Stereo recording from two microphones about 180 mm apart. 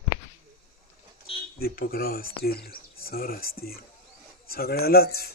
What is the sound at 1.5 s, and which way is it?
Speech, 55° left (ahead or behind).